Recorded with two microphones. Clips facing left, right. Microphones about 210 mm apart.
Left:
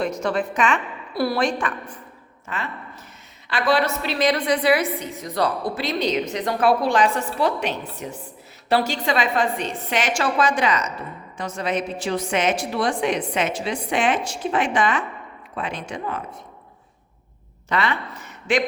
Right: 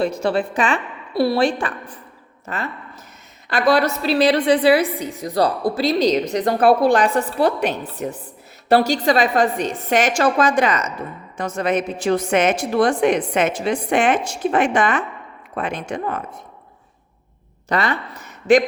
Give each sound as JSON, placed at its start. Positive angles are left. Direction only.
{"t": 0.0, "sound": "a woman's voice", "side_deg": -30}
{"t": 8.8, "sound": "a woman's voice", "side_deg": -40}
{"t": 17.7, "sound": "speech", "side_deg": -40}